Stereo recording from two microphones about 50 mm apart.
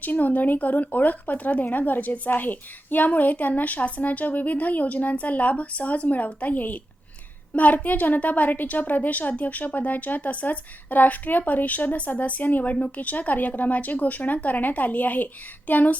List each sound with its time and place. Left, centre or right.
0.0 s speech: left